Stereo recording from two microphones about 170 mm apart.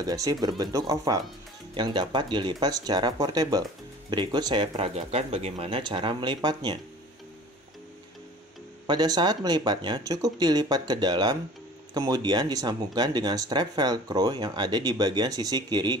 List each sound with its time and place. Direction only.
0.0 s speech: 20° right (ahead or behind)
4.7 s speech: 40° right (ahead or behind)
8.8 s speech: 25° right (ahead or behind)